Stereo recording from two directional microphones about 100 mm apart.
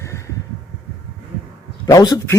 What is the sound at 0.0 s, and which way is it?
Heart sounds, 30° left (ahead or behind).